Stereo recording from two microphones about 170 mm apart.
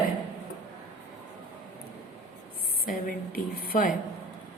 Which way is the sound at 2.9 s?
55° left (ahead or behind).